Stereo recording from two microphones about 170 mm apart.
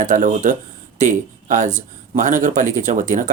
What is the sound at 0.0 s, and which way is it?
Speech, 50° right (ahead or behind).